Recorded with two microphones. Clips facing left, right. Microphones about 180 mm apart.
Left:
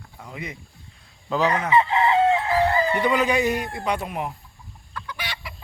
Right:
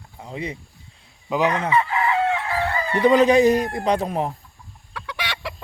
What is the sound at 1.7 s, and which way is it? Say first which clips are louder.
Chicken: left 2 dB; 25° left (ahead or behind).